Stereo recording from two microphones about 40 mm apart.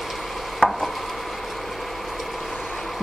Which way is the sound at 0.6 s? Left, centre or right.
Left.